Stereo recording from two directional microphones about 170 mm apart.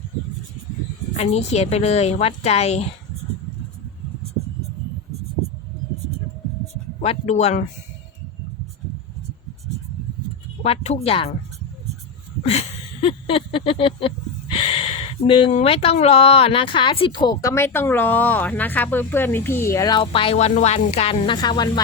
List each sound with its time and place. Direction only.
1.1 s a woman's voice: 40° left (ahead or behind)
7.0 s a woman's voice: 40° left (ahead or behind)
10.6 s a woman's voice: 35° left (ahead or behind)
12.5 s a sound: 35° left (ahead or behind)
14.5 s speech: 35° left (ahead or behind)